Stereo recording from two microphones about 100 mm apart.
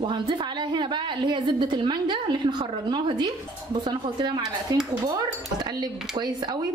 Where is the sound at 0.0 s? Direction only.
55° right (ahead or behind).